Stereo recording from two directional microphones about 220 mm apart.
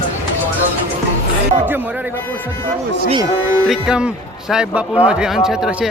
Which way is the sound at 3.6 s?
5° right (ahead or behind).